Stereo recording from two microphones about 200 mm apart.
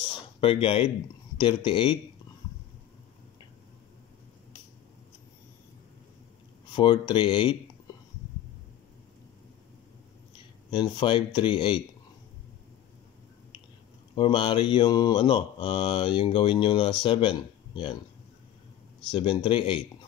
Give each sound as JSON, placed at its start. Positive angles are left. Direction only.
{"t": 0.4, "sound": "mantra", "side_deg": 25}
{"t": 6.7, "sound": "mantra", "side_deg": 25}
{"t": 10.7, "sound": "mantra", "side_deg": 25}
{"t": 14.1, "sound": "mantra", "side_deg": 25}
{"t": 19.0, "sound": "mantra", "side_deg": 25}